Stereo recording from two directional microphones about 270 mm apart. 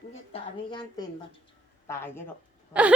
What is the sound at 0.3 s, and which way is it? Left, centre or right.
A woman's voice, centre.